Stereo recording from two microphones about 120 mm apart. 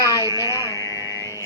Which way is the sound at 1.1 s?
30° left (ahead or behind).